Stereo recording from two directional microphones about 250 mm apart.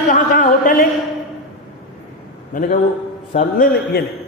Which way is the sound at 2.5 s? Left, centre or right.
Left.